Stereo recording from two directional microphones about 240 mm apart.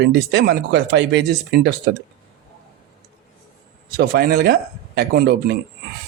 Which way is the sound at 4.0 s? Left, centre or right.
Right.